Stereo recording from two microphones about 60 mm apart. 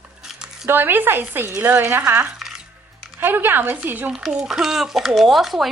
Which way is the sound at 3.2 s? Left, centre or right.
Right.